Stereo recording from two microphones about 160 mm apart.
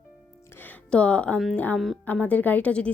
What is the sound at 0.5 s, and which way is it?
A woman's voice, 10° left (ahead or behind).